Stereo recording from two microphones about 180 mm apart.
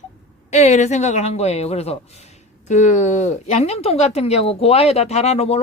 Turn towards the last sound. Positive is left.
turn(degrees=35)  # may be behind; listen again after turning